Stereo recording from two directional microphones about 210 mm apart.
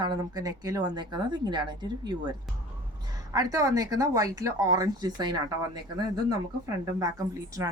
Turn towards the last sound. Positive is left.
turn(degrees=-15)  # may be behind; listen again after turning